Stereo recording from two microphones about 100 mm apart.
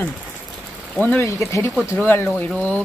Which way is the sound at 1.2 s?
30° left (ahead or behind).